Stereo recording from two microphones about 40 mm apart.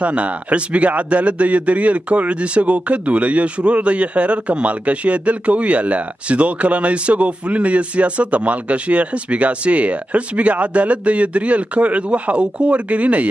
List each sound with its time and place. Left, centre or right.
0.0 s a man's voice: right